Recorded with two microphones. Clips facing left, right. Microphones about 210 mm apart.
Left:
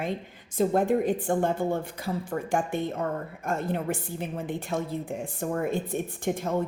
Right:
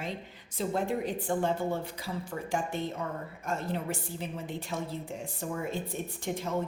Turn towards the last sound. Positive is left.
turn(degrees=50)  # may be behind; listen again after turning